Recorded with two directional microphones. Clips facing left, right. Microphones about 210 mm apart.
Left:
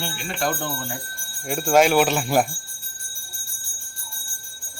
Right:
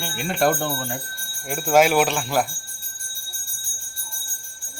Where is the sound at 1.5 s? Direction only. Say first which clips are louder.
Even; 5° right (ahead or behind).